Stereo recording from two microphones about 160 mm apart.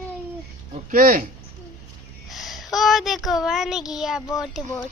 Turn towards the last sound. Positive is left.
turn(degrees=0)  # may be behind; listen again after turning